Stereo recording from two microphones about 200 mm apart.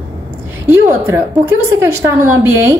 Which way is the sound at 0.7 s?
10° right (ahead or behind).